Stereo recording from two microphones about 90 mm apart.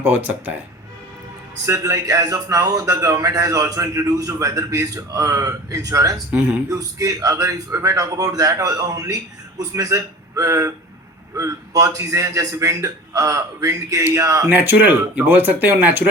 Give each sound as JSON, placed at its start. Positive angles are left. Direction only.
{"t": 0.0, "sound": "speech", "side_deg": -20}
{"t": 1.6, "sound": "a man's voice", "side_deg": -40}
{"t": 14.5, "sound": "speech", "side_deg": -20}